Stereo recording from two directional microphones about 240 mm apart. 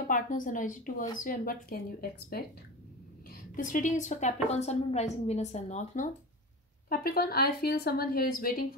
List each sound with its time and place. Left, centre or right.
0.0 s a woman's voice: left
3.5 s a woman's voice: left